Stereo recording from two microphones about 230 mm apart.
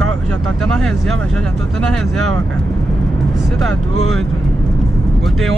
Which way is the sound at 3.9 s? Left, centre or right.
Right.